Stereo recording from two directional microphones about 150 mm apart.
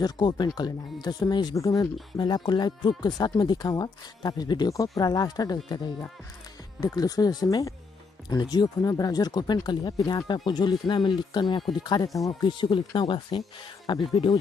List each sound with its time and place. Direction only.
0.0 s speech: 30° left (ahead or behind)
6.8 s speech: 25° left (ahead or behind)